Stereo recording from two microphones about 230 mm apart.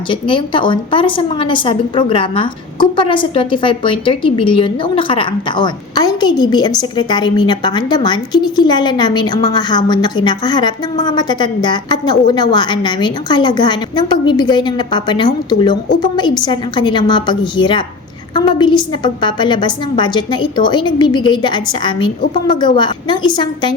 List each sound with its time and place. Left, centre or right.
0.1 s a woman's voice: left